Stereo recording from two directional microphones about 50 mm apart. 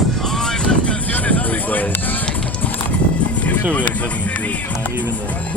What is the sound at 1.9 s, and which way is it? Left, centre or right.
Music, left.